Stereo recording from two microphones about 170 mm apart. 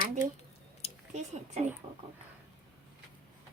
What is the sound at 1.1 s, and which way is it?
Speech, 40° right (ahead or behind).